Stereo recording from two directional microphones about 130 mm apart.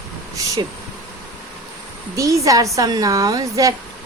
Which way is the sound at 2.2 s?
25° right (ahead or behind).